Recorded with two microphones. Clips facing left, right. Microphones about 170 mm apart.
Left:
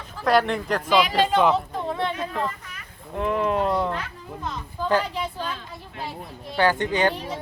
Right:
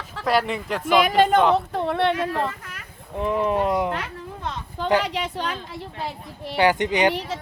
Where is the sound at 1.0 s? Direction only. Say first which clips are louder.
Right 4 dB; 50° right (ahead or behind).